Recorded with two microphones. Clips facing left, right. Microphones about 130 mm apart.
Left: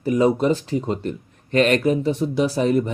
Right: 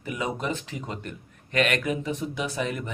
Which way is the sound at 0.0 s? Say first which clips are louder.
Left 12 dB; 35° left (ahead or behind).